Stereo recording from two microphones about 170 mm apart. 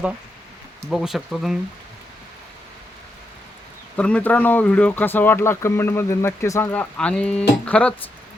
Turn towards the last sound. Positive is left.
turn(degrees=5)  # may be behind; listen again after turning